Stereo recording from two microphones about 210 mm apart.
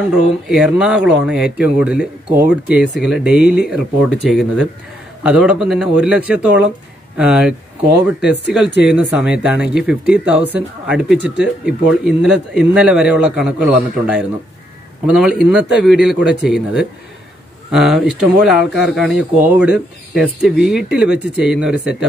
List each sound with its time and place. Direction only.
0.5 s speech: 5° right (ahead or behind)
8.6 s speech: 55° left (ahead or behind)
8.9 s speech: 5° right (ahead or behind)